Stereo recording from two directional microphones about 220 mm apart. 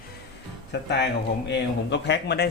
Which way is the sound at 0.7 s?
50° left (ahead or behind).